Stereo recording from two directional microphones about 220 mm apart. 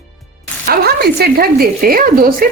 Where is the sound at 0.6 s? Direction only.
45° right (ahead or behind).